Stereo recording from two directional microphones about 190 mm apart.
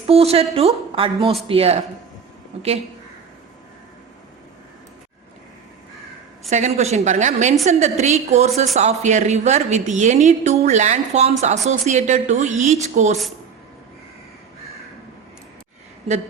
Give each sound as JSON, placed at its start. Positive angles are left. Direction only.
{"t": 0.1, "sound": "a woman's voice", "side_deg": -30}
{"t": 6.5, "sound": "a woman's voice", "side_deg": -35}